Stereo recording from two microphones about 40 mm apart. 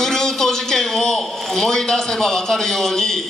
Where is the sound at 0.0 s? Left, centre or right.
Centre.